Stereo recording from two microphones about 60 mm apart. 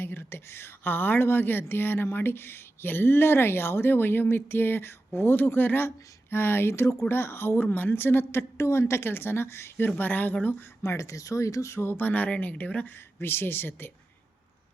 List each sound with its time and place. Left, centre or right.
0.0 s a woman's voice: left
7.1 s a woman's voice: left
9.7 s speech: left
10.8 s a woman's voice: left